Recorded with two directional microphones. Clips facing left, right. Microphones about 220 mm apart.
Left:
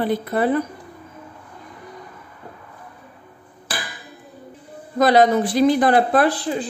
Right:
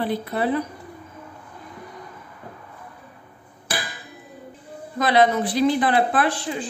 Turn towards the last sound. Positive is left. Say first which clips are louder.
# left 4 dB
turn(degrees=35)  # may be behind; listen again after turning